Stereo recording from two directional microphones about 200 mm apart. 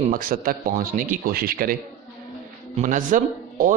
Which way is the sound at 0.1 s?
45° right (ahead or behind).